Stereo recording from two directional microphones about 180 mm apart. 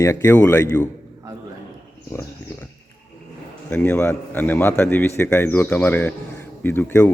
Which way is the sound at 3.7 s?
10° left (ahead or behind).